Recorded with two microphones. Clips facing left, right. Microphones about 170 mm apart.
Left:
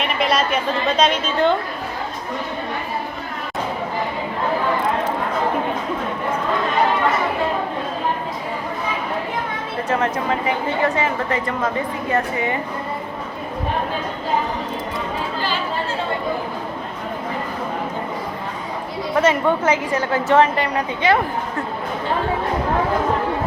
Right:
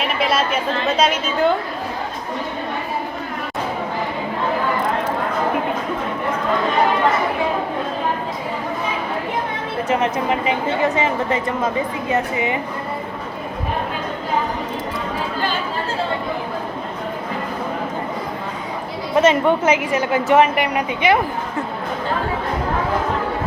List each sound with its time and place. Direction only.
0.0 s chatter: centre (ahead or behind)
0.9 s a woman's voice: 10° right (ahead or behind)
9.9 s a woman's voice: 20° right (ahead or behind)
19.1 s a woman's voice: 20° right (ahead or behind)